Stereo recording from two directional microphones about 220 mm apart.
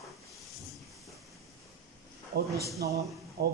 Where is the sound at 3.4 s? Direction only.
45° right (ahead or behind).